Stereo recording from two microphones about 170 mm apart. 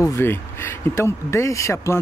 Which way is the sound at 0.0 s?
15° left (ahead or behind).